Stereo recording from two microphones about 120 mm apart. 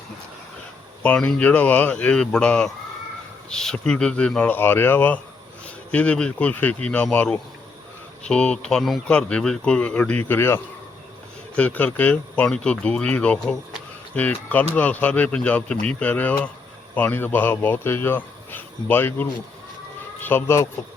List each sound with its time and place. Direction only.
1.0 s speech: 10° left (ahead or behind)